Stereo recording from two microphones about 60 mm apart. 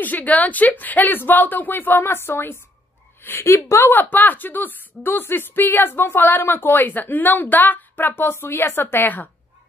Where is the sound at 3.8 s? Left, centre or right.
Left.